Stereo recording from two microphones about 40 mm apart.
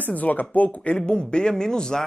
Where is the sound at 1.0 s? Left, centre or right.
Left.